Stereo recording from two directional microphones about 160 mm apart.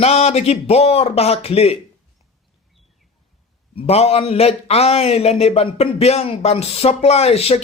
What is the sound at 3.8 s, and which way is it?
A man's voice, 40° left (ahead or behind).